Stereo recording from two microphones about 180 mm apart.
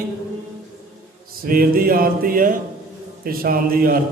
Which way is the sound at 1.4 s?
55° right (ahead or behind).